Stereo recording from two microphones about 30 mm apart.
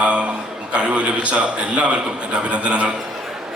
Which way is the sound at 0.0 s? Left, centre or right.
Right.